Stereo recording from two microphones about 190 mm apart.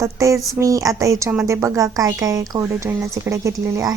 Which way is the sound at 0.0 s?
15° right (ahead or behind).